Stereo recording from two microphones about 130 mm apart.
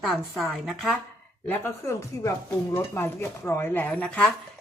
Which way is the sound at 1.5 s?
20° left (ahead or behind).